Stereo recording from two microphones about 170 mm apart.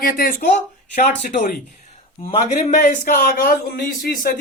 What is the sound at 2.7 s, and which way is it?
Speech, 50° left (ahead or behind).